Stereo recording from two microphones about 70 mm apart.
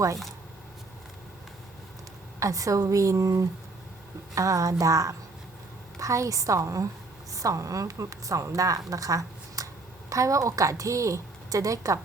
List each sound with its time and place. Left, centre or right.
2.4 s a woman's voice: right
8.9 s a sound: right
10.1 s a woman's voice: right